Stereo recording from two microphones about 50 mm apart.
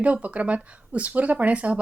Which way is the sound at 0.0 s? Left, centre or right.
Right.